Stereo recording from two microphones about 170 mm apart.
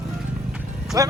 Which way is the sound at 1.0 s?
20° right (ahead or behind).